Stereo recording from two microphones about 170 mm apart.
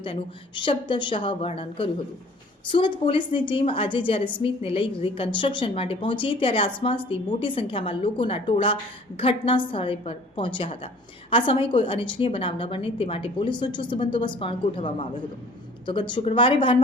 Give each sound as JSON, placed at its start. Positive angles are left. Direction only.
{"t": 0.0, "sound": "a woman's voice", "side_deg": 30}